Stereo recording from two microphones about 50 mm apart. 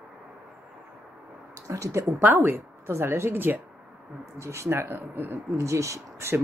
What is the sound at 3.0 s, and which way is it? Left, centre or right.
Speech, right.